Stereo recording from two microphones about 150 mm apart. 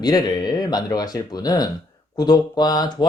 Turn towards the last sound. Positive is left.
turn(degrees=25)  # may be behind; listen again after turning